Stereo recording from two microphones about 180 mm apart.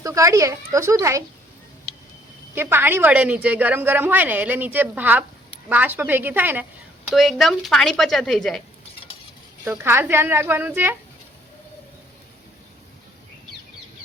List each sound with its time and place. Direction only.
0.0 s a woman's voice: 20° right (ahead or behind)
2.6 s a woman's voice: 10° right (ahead or behind)
9.6 s a woman's voice: 15° right (ahead or behind)